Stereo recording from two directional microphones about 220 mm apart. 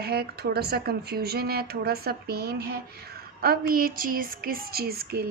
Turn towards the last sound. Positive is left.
turn(degrees=-45)  # may be behind; listen again after turning